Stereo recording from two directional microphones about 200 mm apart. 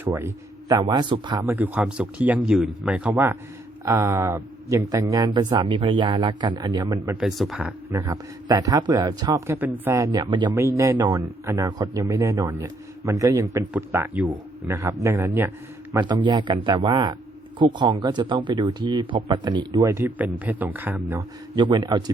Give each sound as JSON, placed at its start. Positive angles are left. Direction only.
{"t": 0.0, "sound": "a man's voice", "side_deg": -10}
{"t": 7.2, "sound": "speech", "side_deg": 0}
{"t": 7.9, "sound": "a man's voice", "side_deg": -15}